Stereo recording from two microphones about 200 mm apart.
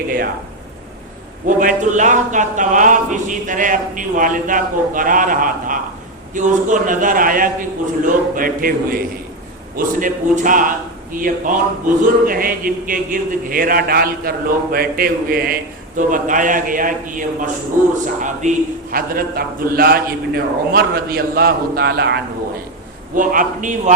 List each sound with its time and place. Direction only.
1.5 s a man's voice: 40° right (ahead or behind)
23.1 s speech: 40° right (ahead or behind)